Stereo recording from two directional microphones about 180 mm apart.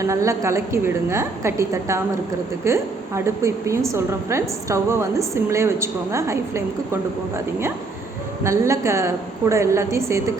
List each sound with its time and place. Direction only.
0.0 s a woman's voice: 15° right (ahead or behind)